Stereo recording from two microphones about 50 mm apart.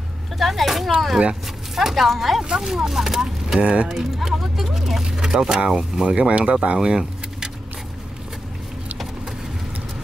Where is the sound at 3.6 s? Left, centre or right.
Right.